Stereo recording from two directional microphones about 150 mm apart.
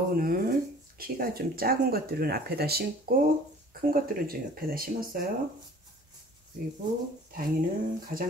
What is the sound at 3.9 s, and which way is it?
Speech, 80° right.